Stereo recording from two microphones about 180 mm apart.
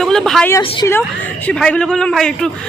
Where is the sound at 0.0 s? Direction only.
Centre (ahead or behind).